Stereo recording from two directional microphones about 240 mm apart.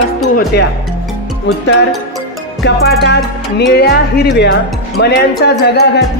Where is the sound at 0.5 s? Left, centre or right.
Left.